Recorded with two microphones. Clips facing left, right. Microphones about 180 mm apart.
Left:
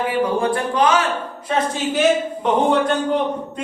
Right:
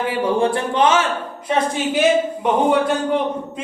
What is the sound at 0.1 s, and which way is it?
Speech, 25° right (ahead or behind).